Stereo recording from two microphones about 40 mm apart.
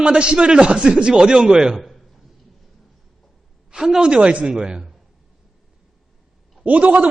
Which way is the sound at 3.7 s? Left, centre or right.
Centre.